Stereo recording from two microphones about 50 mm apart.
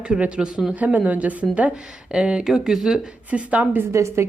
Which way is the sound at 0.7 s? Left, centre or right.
Right.